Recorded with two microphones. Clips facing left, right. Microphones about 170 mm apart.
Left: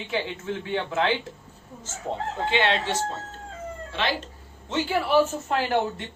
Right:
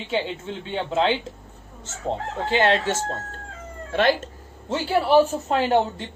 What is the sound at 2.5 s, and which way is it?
Speech, 40° right (ahead or behind).